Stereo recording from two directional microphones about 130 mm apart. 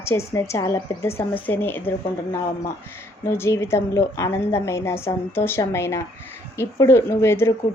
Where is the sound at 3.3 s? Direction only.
20° left (ahead or behind).